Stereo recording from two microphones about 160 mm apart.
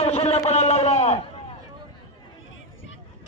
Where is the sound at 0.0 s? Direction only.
40° left (ahead or behind).